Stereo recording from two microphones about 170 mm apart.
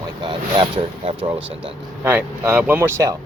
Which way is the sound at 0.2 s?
30° right (ahead or behind).